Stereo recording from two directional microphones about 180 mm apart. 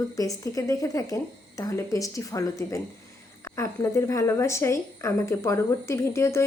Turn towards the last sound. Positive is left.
turn(degrees=15)  # may be behind; listen again after turning